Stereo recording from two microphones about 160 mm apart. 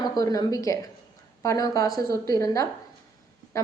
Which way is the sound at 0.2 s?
20° left (ahead or behind).